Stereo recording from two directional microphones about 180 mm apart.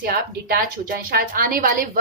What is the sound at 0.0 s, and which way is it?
A woman's voice, 60° right (ahead or behind).